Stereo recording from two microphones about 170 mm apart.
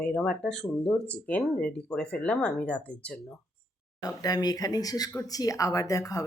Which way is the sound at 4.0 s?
20° left (ahead or behind).